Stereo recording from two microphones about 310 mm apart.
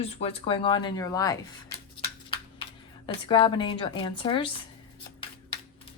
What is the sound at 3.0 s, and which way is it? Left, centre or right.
Speech, centre.